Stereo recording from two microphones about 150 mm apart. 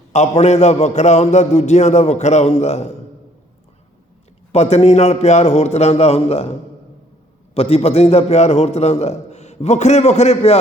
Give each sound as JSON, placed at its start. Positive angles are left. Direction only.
{"t": 0.1, "sound": "a man's voice", "side_deg": 50}
{"t": 4.5, "sound": "a man's voice", "side_deg": 45}
{"t": 7.5, "sound": "a man's voice", "side_deg": 40}